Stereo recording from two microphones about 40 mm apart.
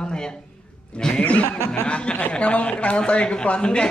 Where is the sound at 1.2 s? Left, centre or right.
Left.